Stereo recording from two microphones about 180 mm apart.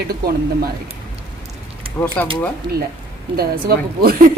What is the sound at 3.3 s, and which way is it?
Speech, 55° right (ahead or behind).